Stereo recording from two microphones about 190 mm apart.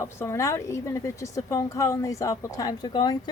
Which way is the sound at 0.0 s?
15° left (ahead or behind).